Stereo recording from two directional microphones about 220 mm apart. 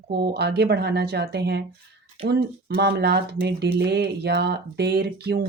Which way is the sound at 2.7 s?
45° right (ahead or behind).